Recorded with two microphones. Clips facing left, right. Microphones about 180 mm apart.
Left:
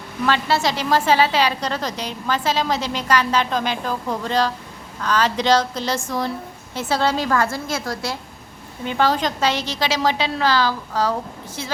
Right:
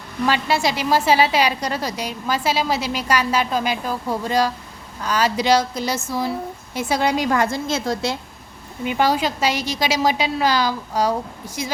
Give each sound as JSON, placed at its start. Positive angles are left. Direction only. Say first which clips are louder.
{"t": 0.3, "sound": "a woman's voice", "louder": "even", "side_deg": -10}